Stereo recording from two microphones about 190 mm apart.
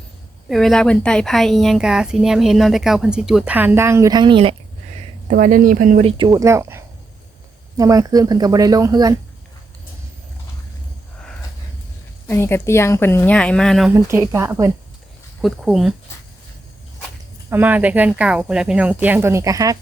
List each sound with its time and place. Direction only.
0.4 s speech: centre (ahead or behind); by 4.5 s 25° right (ahead or behind)
5.3 s speech: 45° right (ahead or behind); by 9.1 s 20° right (ahead or behind)
12.3 s speech: 10° left (ahead or behind)
13.9 s speech: 15° right (ahead or behind)
15.4 s speech: centre (ahead or behind)
17.5 s speech: 10° right (ahead or behind)